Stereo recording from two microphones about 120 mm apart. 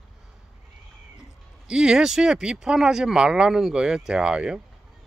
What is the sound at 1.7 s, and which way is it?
Speech, 5° right (ahead or behind).